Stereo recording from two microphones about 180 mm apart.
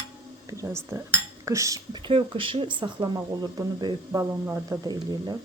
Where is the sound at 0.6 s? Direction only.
15° right (ahead or behind).